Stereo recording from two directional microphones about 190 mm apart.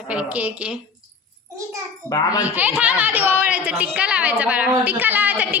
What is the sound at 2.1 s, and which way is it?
Speech, 20° left (ahead or behind).